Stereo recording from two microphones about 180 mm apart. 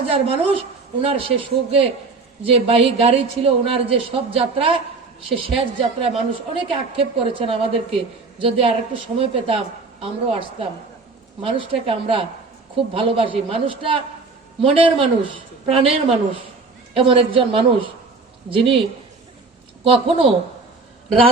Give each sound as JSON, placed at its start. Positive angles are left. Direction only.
{"t": 0.1, "sound": "a woman's voice", "side_deg": -35}
{"t": 19.8, "sound": "a woman's voice", "side_deg": -30}